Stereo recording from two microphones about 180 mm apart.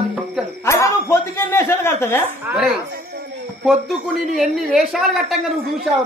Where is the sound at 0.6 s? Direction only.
15° left (ahead or behind).